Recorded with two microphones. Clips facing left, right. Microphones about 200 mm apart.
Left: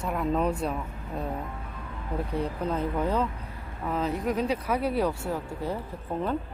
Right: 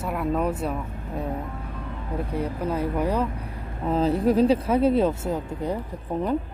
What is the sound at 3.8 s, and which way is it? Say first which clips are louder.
Speech: right 7 dB; 30° right (ahead or behind).